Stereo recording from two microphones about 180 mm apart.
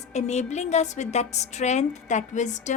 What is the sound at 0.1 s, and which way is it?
A woman's voice, 40° left (ahead or behind).